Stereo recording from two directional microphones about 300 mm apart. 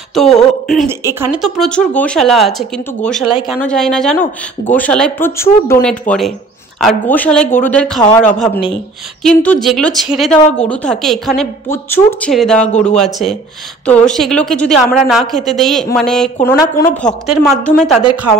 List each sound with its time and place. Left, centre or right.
0.1 s speech: centre
9.4 s speech: centre